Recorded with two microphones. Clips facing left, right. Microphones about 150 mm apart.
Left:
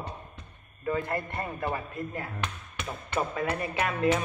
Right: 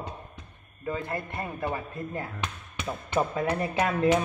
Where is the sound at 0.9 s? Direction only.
20° right (ahead or behind).